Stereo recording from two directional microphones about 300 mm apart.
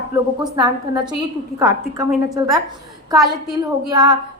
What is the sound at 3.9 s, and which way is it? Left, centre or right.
Speech, centre.